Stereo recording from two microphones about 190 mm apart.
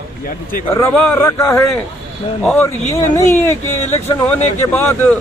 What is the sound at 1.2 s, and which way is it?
Speech, 15° left (ahead or behind).